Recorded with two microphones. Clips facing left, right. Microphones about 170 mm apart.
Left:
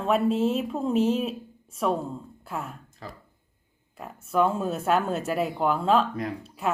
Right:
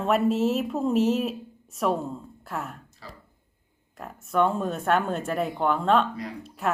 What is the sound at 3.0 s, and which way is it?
Speech, 50° left (ahead or behind).